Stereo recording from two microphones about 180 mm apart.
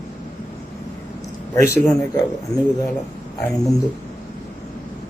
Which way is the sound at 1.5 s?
15° left (ahead or behind).